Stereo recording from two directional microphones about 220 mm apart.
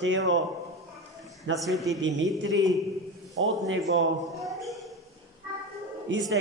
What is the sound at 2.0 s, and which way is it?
Speech, 55° right (ahead or behind).